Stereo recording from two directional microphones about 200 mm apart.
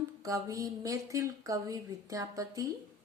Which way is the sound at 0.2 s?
15° right (ahead or behind).